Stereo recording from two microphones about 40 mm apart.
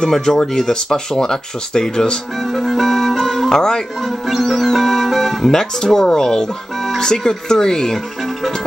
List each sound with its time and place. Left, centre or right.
0.0 s speech: centre
2.5 s music: centre
3.5 s speech: centre
4.3 s music: centre
7.0 s speech: centre